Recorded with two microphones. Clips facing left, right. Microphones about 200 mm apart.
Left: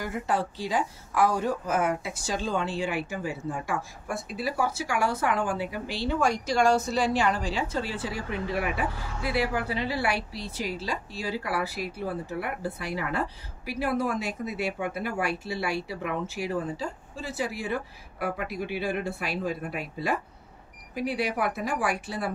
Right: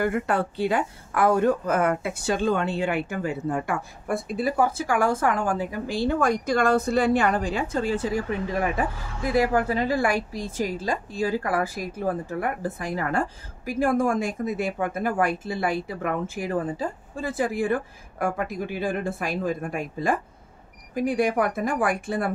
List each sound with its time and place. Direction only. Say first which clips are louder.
0.0 s a woman's voice: right 5 dB; 60° right (ahead or behind)